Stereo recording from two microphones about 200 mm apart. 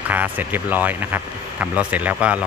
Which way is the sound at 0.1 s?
10° right (ahead or behind).